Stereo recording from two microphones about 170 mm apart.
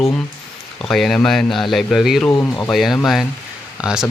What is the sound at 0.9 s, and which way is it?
Speech, centre (ahead or behind).